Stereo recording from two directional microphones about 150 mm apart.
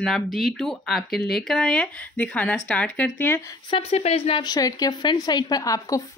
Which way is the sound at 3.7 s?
40° left (ahead or behind).